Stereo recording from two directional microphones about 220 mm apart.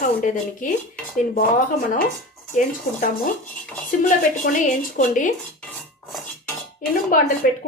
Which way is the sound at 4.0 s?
35° left (ahead or behind).